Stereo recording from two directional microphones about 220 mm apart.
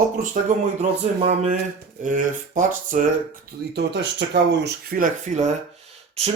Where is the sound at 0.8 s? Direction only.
30° right (ahead or behind).